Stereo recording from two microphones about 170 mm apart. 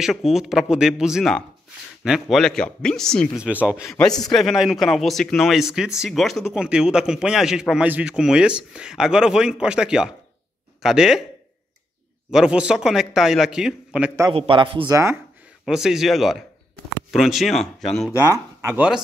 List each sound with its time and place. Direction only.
0.0 s a man's voice: centre (ahead or behind)
3.4 s speech: 5° right (ahead or behind)
3.9 s a man's voice: 5° left (ahead or behind)
12.3 s a man's voice: 5° right (ahead or behind)
14.3 s a man's voice: 30° right (ahead or behind)
14.9 s speech: 15° right (ahead or behind)
15.6 s a man's voice: 5° right (ahead or behind)
18.1 s speech: 15° right (ahead or behind)